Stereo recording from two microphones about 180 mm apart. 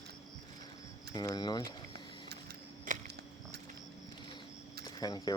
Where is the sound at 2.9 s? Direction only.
45° right (ahead or behind).